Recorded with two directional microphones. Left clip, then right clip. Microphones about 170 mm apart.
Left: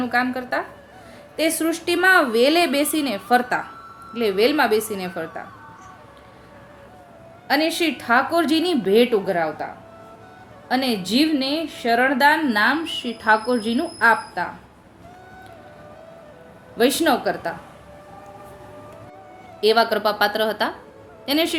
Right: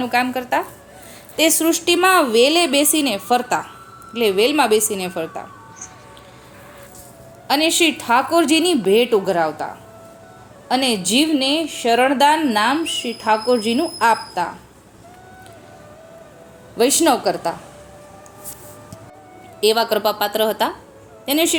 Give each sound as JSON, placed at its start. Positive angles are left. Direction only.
{"t": 0.0, "sound": "a woman's voice", "side_deg": -25}
{"t": 7.4, "sound": "a woman's voice", "side_deg": -20}
{"t": 10.7, "sound": "a woman's voice", "side_deg": -15}
{"t": 16.7, "sound": "a woman's voice", "side_deg": -15}
{"t": 19.6, "sound": "a woman's voice", "side_deg": -15}